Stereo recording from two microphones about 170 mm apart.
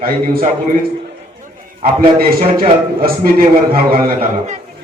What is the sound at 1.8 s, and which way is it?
A man's voice, 60° right (ahead or behind).